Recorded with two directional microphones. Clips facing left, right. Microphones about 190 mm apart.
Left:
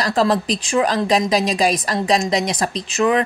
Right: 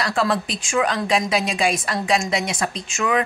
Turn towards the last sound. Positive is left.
turn(degrees=35)  # may be behind; listen again after turning